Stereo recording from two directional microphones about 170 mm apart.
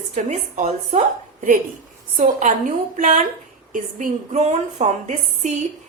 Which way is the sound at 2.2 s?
45° right (ahead or behind).